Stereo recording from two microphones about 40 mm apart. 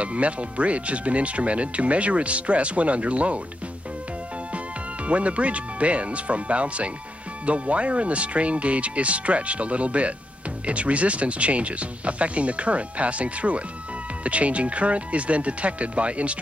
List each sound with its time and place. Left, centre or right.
0.0 s speech: right
5.0 s speech: right